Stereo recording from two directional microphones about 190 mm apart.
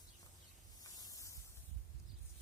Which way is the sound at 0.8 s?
20° left (ahead or behind).